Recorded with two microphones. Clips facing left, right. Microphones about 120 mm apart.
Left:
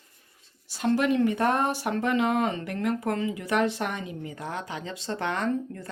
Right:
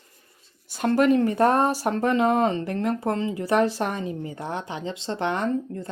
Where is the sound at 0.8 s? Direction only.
45° right (ahead or behind).